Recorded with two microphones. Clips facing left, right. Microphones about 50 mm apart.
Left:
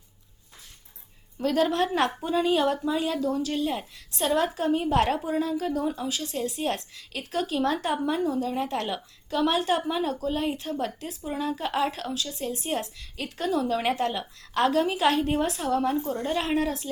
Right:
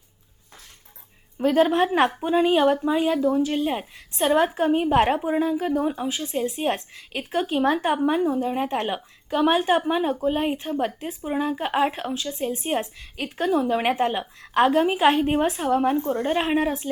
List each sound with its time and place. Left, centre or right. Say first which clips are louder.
1.4 s a woman's voice: right 5 dB; right